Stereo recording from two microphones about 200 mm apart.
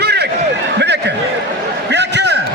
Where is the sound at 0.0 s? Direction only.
55° right (ahead or behind).